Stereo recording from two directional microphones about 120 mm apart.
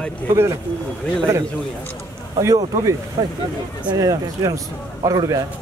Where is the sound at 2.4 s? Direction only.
25° right (ahead or behind).